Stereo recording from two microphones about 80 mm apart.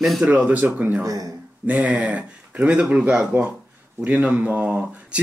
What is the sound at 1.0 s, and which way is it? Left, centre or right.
Speech, right.